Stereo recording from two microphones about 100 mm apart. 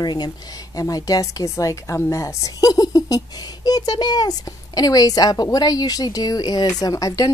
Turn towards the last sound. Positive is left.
turn(degrees=35)  # may be behind; listen again after turning